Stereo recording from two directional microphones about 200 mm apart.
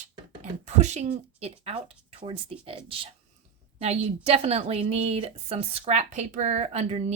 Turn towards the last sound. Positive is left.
turn(degrees=-35)  # may be behind; listen again after turning